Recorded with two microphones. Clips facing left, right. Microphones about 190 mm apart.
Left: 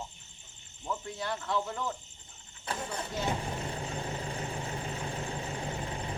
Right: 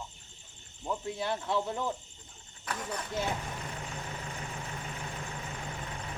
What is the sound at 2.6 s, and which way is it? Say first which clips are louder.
Vehicle: left 1 dB; 25° left (ahead or behind).